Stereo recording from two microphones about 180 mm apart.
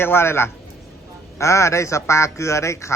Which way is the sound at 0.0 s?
15° left (ahead or behind).